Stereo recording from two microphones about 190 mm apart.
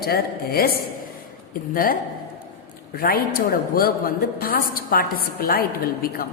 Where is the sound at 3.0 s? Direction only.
50° left (ahead or behind).